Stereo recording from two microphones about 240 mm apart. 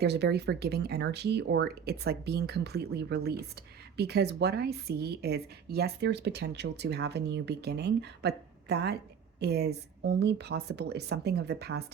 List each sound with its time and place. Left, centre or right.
0.0 s a woman's voice: right